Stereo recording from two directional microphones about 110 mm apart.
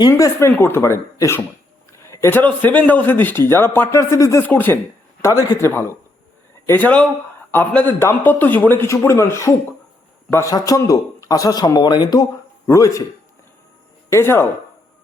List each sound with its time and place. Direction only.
0.1 s a man's voice: 25° left (ahead or behind)
5.2 s a man's voice: 30° left (ahead or behind)
12.6 s a man's voice: 30° left (ahead or behind)
14.1 s a man's voice: 25° left (ahead or behind)